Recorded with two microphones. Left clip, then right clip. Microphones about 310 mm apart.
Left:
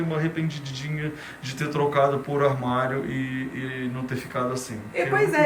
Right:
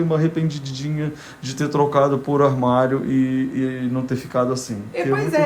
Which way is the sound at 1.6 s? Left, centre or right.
Centre.